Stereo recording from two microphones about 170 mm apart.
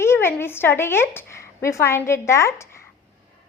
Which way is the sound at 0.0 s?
15° left (ahead or behind).